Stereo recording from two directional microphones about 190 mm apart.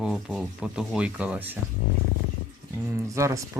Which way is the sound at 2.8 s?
15° right (ahead or behind).